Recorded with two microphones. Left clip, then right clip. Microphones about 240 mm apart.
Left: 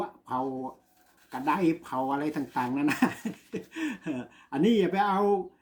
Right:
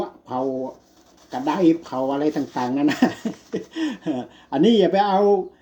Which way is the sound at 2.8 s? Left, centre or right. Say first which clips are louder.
Right 7 dB; centre.